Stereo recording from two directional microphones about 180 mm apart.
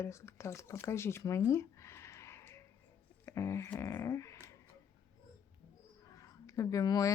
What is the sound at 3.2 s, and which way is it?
Speech, 15° left (ahead or behind).